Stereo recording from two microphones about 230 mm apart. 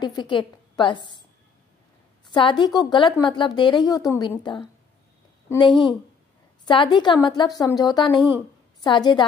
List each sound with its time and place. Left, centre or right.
0.0 s a woman's voice: centre
2.2 s a woman's voice: left